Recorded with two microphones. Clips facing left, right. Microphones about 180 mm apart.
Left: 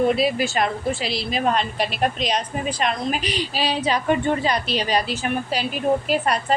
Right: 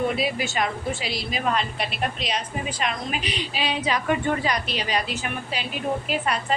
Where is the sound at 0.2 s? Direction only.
35° left (ahead or behind).